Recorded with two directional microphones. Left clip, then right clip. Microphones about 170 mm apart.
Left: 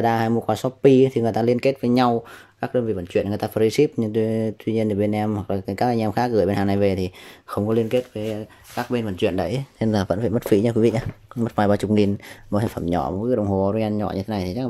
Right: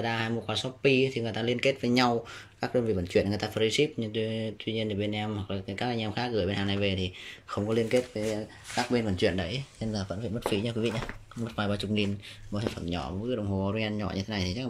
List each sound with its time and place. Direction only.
0.0 s speech: 35° left (ahead or behind)
7.5 s speech: 20° left (ahead or behind)
9.5 s speech: 50° left (ahead or behind); by 14.7 s 20° left (ahead or behind)